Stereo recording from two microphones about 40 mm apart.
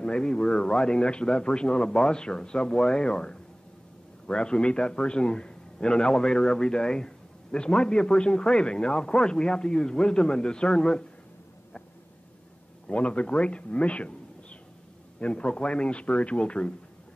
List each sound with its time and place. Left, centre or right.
0.0 s a man's voice: centre
12.8 s a man's voice: left